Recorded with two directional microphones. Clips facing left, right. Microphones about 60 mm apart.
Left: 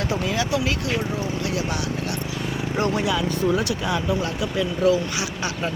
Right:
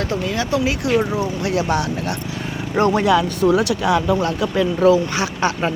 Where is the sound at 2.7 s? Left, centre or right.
Right.